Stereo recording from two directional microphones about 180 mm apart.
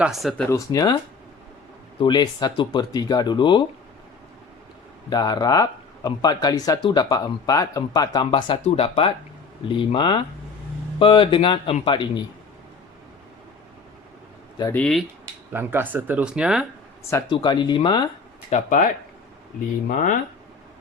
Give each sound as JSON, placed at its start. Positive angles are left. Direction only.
{"t": 0.0, "sound": "speech", "side_deg": 0}
{"t": 0.5, "sound": "speech", "side_deg": 20}
{"t": 2.0, "sound": "speech", "side_deg": 25}
{"t": 5.0, "sound": "speech", "side_deg": 20}
{"t": 14.6, "sound": "speech", "side_deg": 10}
{"t": 15.5, "sound": "speech", "side_deg": -10}
{"t": 17.2, "sound": "speech", "side_deg": 25}
{"t": 18.5, "sound": "speech", "side_deg": 45}
{"t": 19.9, "sound": "speech", "side_deg": 50}